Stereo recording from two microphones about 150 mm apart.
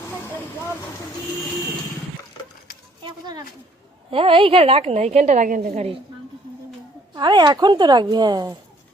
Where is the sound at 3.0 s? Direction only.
30° right (ahead or behind); by 5.8 s 60° right (ahead or behind).